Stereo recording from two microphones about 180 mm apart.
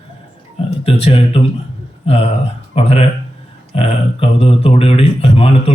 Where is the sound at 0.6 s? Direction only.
35° left (ahead or behind).